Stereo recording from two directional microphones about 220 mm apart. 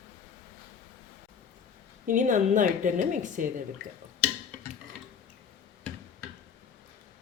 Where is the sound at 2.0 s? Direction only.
35° right (ahead or behind).